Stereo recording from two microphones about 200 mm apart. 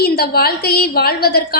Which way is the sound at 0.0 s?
50° left (ahead or behind).